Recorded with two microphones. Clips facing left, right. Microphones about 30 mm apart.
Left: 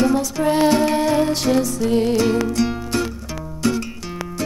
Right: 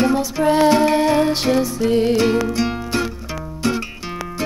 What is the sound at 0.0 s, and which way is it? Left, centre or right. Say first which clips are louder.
Music: right 1 dB; centre.